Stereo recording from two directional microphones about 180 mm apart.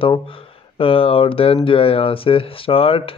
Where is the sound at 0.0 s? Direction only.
30° left (ahead or behind).